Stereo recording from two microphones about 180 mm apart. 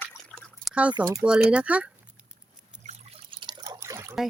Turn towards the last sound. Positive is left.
turn(degrees=-15)  # may be behind; listen again after turning